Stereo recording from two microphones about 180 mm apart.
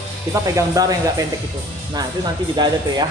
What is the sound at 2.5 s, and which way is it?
Speech, 25° right (ahead or behind).